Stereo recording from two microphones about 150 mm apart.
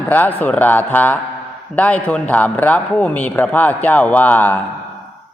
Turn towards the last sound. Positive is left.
turn(degrees=10)  # may be behind; listen again after turning